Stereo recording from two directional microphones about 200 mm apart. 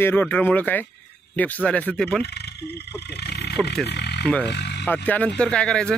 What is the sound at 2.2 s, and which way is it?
Speech, 55° left (ahead or behind).